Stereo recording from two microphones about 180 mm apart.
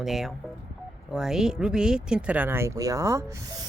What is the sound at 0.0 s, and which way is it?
Speech, centre (ahead or behind).